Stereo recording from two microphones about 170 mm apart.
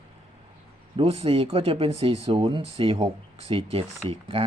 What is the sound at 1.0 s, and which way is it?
Speech, 35° right (ahead or behind).